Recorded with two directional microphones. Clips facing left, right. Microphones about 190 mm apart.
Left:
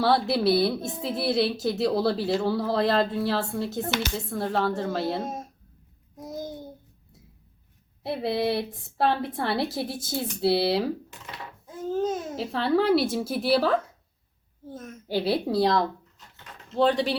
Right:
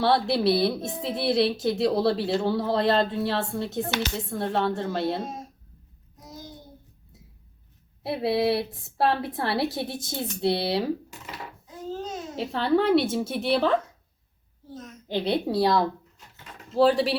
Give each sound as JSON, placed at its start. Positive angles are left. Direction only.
{"t": 0.0, "sound": "a woman's voice", "side_deg": 0}
{"t": 6.2, "sound": "a sound", "side_deg": 50}
{"t": 8.0, "sound": "a woman's voice", "side_deg": 0}
{"t": 12.4, "sound": "a woman's voice", "side_deg": 0}
{"t": 14.7, "sound": "a child's voice", "side_deg": 50}
{"t": 15.0, "sound": "a woman's voice", "side_deg": 5}